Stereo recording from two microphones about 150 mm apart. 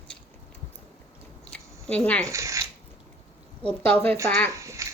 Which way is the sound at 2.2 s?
20° right (ahead or behind).